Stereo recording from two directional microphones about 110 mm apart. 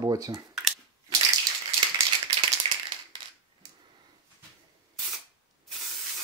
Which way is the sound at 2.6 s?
55° right (ahead or behind).